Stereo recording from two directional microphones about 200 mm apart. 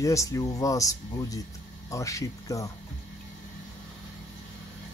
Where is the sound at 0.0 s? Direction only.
15° left (ahead or behind).